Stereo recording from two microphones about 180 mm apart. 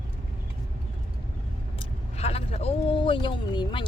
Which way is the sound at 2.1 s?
35° left (ahead or behind).